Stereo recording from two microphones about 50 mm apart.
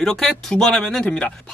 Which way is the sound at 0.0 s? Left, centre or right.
Centre.